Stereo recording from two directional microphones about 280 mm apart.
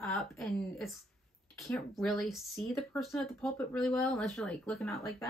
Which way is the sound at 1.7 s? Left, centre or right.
Centre.